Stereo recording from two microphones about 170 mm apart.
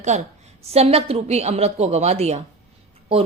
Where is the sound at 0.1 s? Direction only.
45° right (ahead or behind).